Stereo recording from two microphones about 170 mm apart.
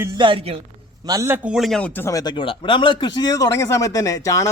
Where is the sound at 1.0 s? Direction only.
20° right (ahead or behind).